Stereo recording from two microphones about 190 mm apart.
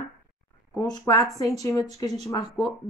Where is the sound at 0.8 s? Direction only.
20° left (ahead or behind).